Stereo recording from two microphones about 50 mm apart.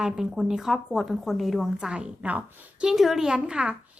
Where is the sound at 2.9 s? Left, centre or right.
Centre.